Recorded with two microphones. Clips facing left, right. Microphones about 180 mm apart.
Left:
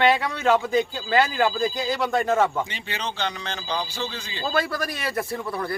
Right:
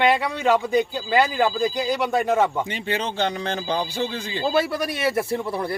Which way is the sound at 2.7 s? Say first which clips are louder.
Right 6 dB; 50° right (ahead or behind).